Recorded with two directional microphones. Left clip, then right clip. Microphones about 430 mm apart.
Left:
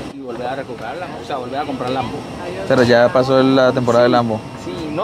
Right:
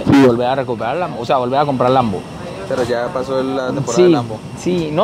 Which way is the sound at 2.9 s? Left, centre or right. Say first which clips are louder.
Left 7 dB; left.